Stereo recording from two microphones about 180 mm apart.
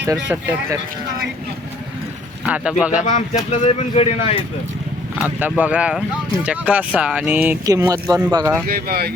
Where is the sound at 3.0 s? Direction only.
45° left (ahead or behind).